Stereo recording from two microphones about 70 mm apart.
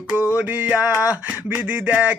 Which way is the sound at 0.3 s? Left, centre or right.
Right.